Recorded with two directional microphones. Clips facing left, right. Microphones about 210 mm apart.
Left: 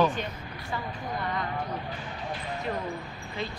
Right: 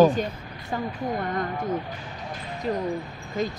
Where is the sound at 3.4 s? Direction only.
45° right (ahead or behind).